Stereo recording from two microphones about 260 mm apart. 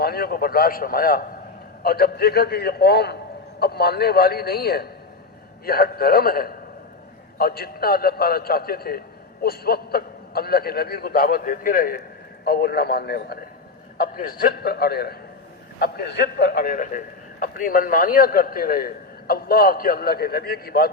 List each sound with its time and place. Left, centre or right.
0.0 s a man's voice: left